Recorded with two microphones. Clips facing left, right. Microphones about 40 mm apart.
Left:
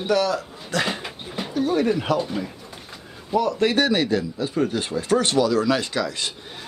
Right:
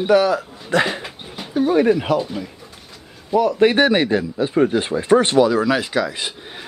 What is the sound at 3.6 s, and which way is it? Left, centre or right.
Speech, right.